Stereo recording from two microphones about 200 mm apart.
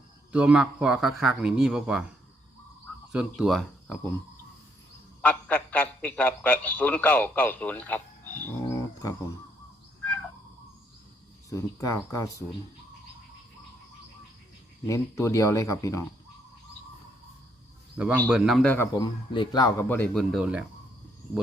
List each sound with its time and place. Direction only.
0.3 s speech: 5° right (ahead or behind)
3.1 s speech: 5° right (ahead or behind)
5.2 s a man's voice: 5° left (ahead or behind)
11.4 s speech: 15° left (ahead or behind)
14.8 s speech: 15° left (ahead or behind)
17.9 s a man's voice: 5° right (ahead or behind); by 19.0 s 10° left (ahead or behind)
19.0 s speech: 25° left (ahead or behind)
20.0 s speech: centre (ahead or behind)